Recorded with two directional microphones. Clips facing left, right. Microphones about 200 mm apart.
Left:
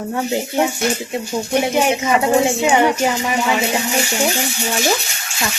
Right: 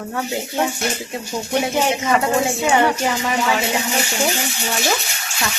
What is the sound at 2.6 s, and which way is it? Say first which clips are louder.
Speech: even; 15° left (ahead or behind).